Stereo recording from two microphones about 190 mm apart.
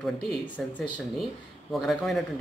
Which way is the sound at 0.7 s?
5° left (ahead or behind).